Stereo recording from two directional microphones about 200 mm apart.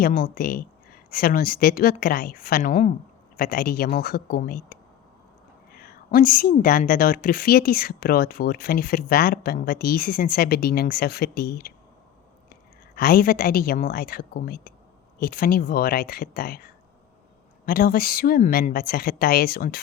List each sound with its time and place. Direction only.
0.0 s a woman's voice: 45° left (ahead or behind)
13.0 s a woman's voice: 50° left (ahead or behind)